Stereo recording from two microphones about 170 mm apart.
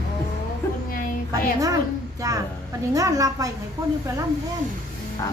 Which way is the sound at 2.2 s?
20° right (ahead or behind).